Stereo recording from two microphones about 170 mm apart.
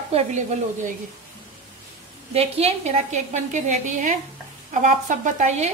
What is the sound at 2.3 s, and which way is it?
A woman's voice, 40° right (ahead or behind).